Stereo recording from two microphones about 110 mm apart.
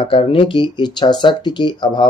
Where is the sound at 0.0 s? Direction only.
55° left (ahead or behind).